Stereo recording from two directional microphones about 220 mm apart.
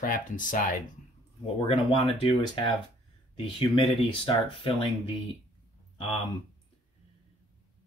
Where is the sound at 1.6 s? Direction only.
25° left (ahead or behind).